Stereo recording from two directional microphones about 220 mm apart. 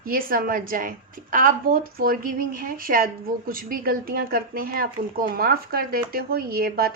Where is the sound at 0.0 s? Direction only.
40° right (ahead or behind).